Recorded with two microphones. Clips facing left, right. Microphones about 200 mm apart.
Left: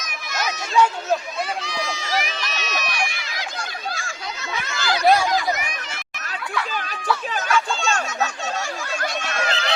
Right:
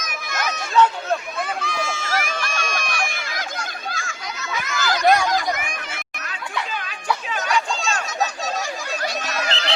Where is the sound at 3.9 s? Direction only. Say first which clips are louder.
Even; 35° left (ahead or behind).